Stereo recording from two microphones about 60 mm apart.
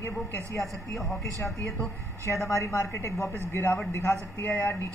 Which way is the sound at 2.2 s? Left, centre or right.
Left.